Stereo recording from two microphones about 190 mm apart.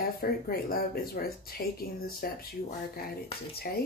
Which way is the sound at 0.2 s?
50° left (ahead or behind).